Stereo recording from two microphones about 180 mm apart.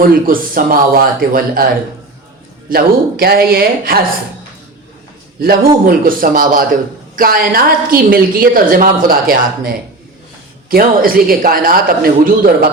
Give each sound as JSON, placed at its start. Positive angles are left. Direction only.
{"t": 0.0, "sound": "a woman's voice", "side_deg": -50}
{"t": 2.6, "sound": "speech", "side_deg": -55}
{"t": 5.4, "sound": "a woman's voice", "side_deg": -55}
{"t": 10.7, "sound": "a woman's voice", "side_deg": -55}